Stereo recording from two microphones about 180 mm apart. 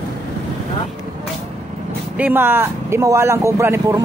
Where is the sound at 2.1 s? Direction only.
10° right (ahead or behind).